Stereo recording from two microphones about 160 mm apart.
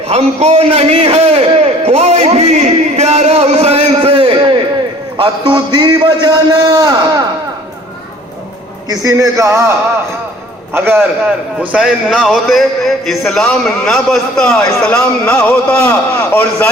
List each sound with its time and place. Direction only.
0.1 s a man's voice: 45° right (ahead or behind); by 6.9 s 25° right (ahead or behind)
8.9 s a man's voice: 20° right (ahead or behind)
10.8 s a man's voice: 15° right (ahead or behind); by 16.6 s 15° left (ahead or behind)